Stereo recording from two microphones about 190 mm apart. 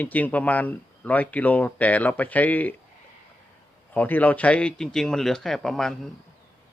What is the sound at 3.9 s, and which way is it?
Speech, 10° left (ahead or behind).